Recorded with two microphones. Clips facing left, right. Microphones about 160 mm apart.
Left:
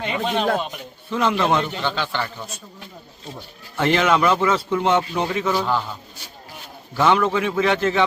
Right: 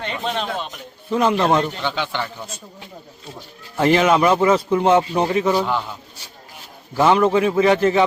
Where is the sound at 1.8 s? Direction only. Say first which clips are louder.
Right 1 dB; 15° right (ahead or behind).